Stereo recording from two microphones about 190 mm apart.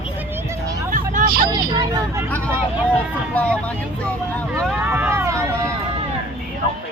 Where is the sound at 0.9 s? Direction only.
45° right (ahead or behind).